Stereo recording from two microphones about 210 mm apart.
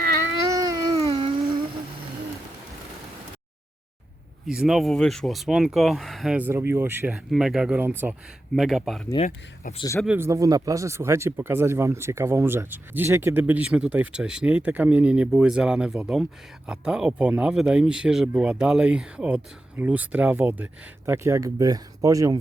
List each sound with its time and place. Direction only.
0.5 s a sound: 15° right (ahead or behind)
4.4 s speech: centre (ahead or behind)
9.7 s speech: 15° left (ahead or behind)
10.2 s speech: 15° right (ahead or behind)